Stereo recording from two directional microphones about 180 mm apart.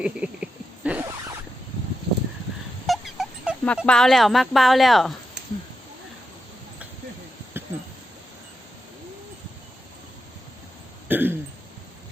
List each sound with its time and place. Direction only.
0.0 s a sound: 5° right (ahead or behind)
0.9 s zipper: 10° right (ahead or behind)
2.8 s dog: centre (ahead or behind)
3.8 s speech: 5° left (ahead or behind)
7.6 s a sound: 10° right (ahead or behind)
11.1 s throat clearing: 10° right (ahead or behind)